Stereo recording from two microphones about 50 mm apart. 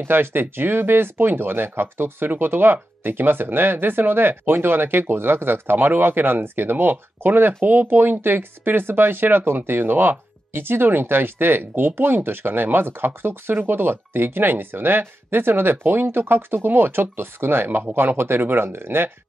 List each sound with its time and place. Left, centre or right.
0.0 s speech: right